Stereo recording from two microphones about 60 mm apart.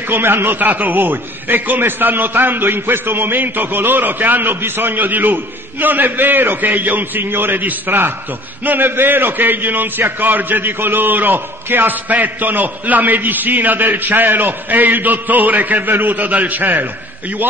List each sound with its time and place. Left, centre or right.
0.1 s a man's voice: right